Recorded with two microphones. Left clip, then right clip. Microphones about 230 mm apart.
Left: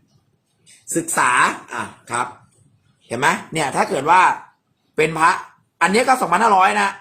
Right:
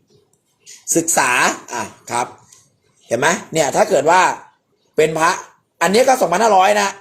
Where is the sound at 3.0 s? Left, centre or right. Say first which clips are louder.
Right 2 dB; centre.